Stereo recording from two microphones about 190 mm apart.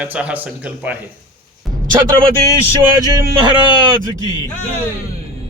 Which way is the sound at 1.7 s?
Centre (ahead or behind).